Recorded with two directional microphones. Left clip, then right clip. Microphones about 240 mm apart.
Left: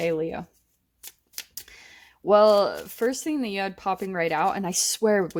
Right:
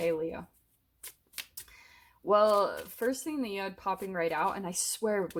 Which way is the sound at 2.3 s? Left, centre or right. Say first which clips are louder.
Left 7 dB; left.